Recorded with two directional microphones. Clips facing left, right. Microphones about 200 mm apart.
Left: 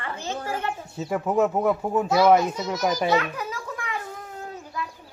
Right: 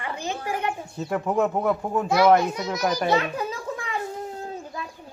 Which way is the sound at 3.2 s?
30° right (ahead or behind).